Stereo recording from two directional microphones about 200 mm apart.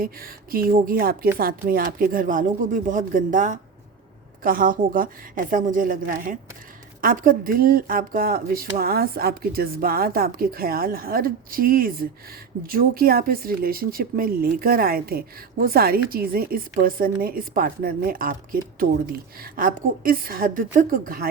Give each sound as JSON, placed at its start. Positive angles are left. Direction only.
{"t": 0.0, "sound": "speech", "side_deg": -45}